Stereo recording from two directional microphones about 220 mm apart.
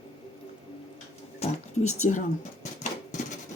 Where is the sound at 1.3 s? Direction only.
30° left (ahead or behind).